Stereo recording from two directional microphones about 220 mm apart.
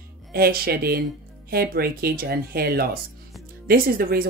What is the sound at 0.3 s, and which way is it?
Speech, 45° right (ahead or behind).